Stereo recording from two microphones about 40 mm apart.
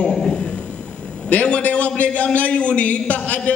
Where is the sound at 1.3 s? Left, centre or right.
Left.